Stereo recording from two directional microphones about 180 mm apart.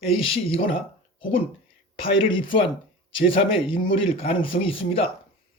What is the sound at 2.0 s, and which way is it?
Speech, 30° left (ahead or behind).